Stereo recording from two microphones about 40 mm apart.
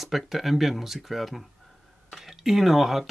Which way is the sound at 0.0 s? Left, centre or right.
Centre.